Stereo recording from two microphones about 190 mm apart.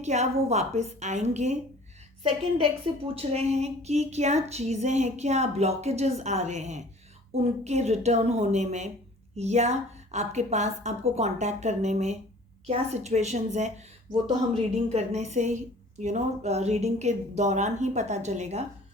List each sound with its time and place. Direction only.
0.0 s speech: 35° right (ahead or behind)
2.6 s speech: 30° right (ahead or behind)